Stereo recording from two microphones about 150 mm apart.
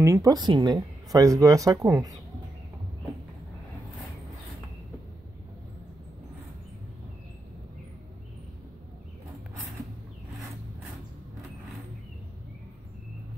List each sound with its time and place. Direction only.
0.0 s speech: 20° right (ahead or behind)